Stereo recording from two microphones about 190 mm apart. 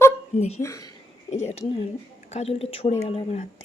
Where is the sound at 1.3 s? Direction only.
35° left (ahead or behind).